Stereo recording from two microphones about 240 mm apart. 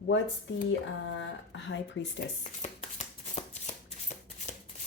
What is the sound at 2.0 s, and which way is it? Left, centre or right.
Speech, left.